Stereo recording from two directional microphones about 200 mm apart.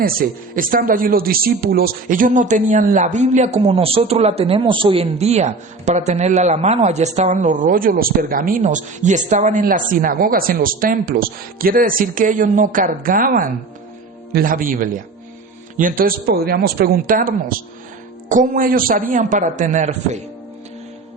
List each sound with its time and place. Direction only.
0.0 s a man's voice: 45° right (ahead or behind)